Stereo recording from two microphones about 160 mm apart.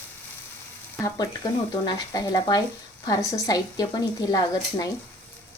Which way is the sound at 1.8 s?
25° left (ahead or behind).